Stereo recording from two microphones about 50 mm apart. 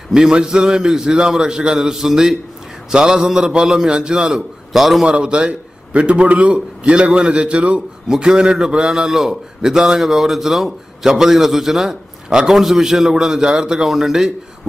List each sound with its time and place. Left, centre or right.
0.1 s a man's voice: centre
5.0 s a man's voice: centre